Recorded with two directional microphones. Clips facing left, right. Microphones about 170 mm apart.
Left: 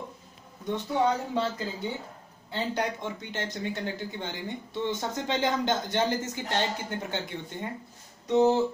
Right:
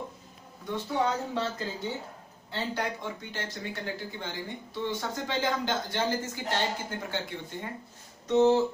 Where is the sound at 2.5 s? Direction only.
20° left (ahead or behind).